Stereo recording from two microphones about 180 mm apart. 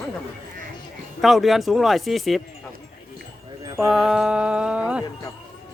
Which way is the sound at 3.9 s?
Centre (ahead or behind).